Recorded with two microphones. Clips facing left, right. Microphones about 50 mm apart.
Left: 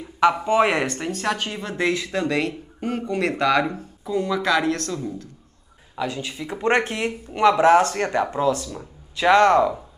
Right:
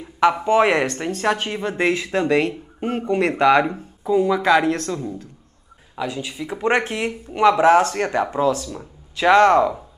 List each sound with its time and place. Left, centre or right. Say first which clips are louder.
0.0 s a sound: right 1 dB; centre
0.6 s speech: right 2 dB; centre
1.2 s speech: right 6 dB; right
6.0 s speech: right 2 dB; centre
7.9 s speech: right 1 dB; centre
9.6 s speech: right 1 dB; centre